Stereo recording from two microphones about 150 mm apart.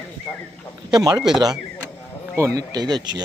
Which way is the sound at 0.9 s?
25° right (ahead or behind).